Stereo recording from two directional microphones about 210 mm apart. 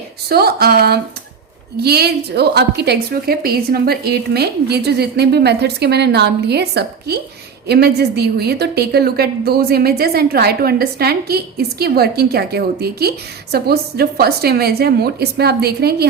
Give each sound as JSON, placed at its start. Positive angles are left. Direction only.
{"t": 0.3, "sound": "a woman's voice", "side_deg": -50}